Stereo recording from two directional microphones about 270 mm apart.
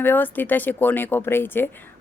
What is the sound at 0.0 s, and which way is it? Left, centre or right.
Speech, centre.